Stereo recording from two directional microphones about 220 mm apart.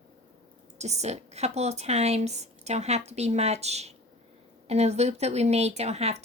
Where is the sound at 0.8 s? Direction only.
30° right (ahead or behind).